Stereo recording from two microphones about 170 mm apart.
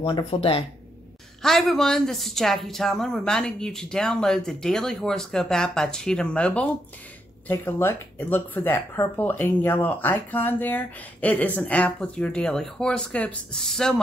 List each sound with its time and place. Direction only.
0.0 s speech: 30° left (ahead or behind)
1.4 s speech: centre (ahead or behind)